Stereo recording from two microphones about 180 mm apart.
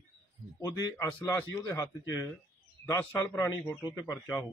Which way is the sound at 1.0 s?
15° left (ahead or behind).